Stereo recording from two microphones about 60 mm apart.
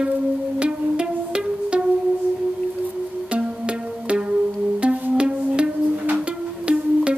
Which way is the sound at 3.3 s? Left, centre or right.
Centre.